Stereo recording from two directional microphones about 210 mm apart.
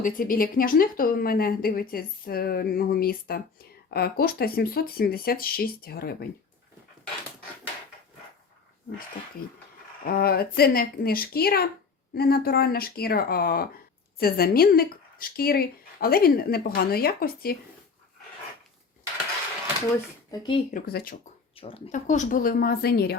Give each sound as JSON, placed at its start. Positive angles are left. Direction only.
{"t": 0.0, "sound": "speech", "side_deg": 40}
{"t": 10.0, "sound": "speech", "side_deg": 45}
{"t": 20.3, "sound": "speech", "side_deg": 20}
{"t": 20.7, "sound": "speech", "side_deg": 45}
{"t": 21.5, "sound": "speech", "side_deg": 25}